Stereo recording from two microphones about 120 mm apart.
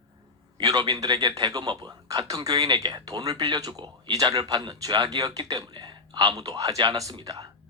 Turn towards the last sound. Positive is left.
turn(degrees=-30)  # may be behind; listen again after turning